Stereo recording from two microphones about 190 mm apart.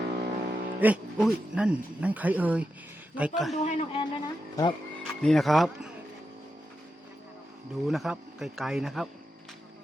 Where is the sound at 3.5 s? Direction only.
35° left (ahead or behind).